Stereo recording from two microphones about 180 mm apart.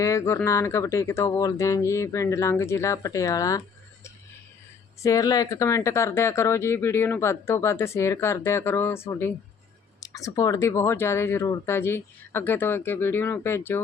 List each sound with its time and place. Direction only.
0.0 s speech: 15° left (ahead or behind)
5.0 s speech: 20° left (ahead or behind)